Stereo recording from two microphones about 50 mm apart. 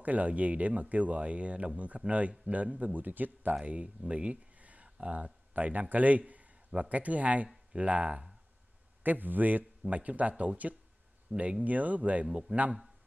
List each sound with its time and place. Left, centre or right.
0.0 s a man's voice: right
3.5 s a man's voice: right
9.0 s a man's voice: right